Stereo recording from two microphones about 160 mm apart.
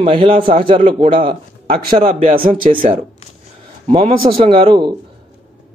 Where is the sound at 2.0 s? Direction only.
55° right (ahead or behind).